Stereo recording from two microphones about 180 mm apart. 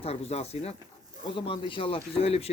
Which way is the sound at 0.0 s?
35° left (ahead or behind).